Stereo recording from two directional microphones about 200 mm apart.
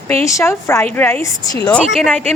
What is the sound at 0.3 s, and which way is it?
Speech, 15° left (ahead or behind).